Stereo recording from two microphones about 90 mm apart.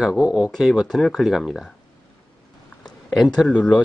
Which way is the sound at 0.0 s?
5° right (ahead or behind).